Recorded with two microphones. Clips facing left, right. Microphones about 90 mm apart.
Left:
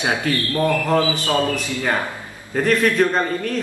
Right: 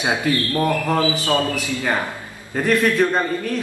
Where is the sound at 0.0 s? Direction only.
20° right (ahead or behind).